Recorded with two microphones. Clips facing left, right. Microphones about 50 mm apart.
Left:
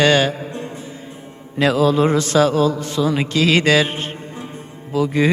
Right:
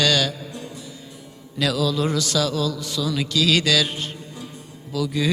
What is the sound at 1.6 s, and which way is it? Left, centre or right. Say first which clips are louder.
Music: left 7 dB; left.